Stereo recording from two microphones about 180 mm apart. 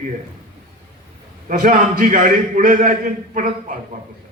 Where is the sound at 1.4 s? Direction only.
50° right (ahead or behind).